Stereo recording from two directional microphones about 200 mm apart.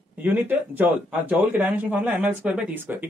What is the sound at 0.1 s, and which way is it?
Speech, 10° right (ahead or behind).